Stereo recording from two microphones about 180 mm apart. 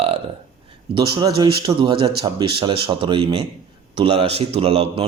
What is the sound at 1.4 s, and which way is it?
Speech, 25° right (ahead or behind).